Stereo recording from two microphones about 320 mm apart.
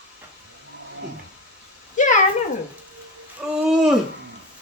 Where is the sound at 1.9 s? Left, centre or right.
Left.